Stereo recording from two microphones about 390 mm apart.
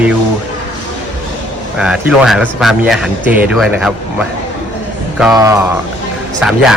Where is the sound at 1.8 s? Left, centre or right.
Centre.